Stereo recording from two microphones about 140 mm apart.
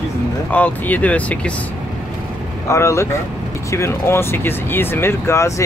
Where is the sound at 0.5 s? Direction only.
10° left (ahead or behind).